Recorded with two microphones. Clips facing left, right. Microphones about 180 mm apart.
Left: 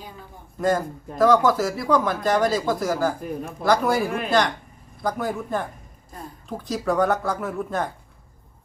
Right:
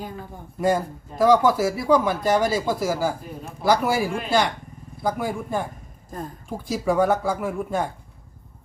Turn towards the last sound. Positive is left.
turn(degrees=-10)  # may be behind; listen again after turning